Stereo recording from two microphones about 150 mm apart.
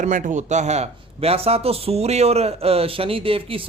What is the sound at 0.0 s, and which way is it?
Speech, 55° right (ahead or behind).